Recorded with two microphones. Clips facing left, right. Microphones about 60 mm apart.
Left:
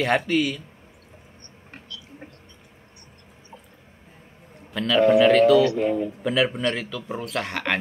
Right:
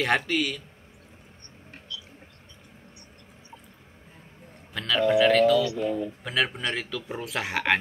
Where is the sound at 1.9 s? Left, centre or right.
Left.